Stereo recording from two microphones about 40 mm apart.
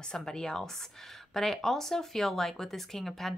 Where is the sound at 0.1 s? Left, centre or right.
Centre.